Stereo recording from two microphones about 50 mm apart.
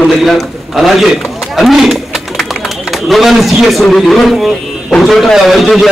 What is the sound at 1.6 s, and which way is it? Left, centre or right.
Pigeon, centre.